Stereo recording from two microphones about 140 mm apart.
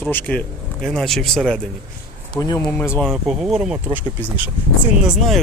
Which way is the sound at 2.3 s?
25° left (ahead or behind).